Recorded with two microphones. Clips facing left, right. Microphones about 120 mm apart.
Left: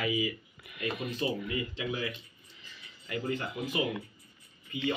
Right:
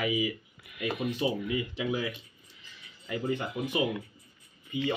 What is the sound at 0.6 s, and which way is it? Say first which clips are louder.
Speech: right 3 dB; 5° right (ahead or behind).